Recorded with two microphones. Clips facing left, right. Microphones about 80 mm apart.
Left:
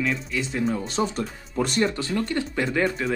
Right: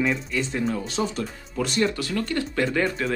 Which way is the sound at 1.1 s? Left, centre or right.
Left.